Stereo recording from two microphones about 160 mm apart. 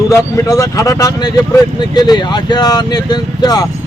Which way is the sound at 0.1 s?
20° left (ahead or behind).